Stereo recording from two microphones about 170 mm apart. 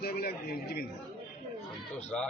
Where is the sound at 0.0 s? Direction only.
65° left (ahead or behind).